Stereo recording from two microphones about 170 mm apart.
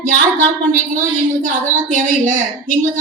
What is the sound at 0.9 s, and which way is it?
A woman's voice, 50° right (ahead or behind).